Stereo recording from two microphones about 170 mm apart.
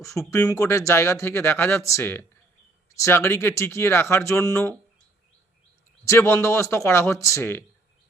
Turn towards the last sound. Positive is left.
turn(degrees=15)  # may be behind; listen again after turning